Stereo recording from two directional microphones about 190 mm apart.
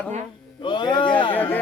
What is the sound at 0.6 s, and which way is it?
Speech, 25° left (ahead or behind).